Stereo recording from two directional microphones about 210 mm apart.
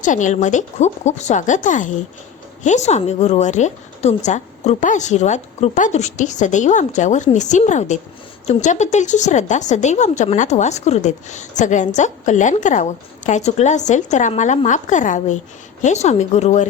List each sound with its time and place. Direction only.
0.0 s a woman's voice: 35° left (ahead or behind)